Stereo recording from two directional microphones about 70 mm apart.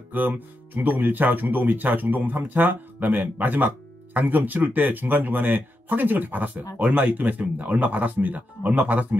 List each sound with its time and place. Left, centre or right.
0.1 s speech: right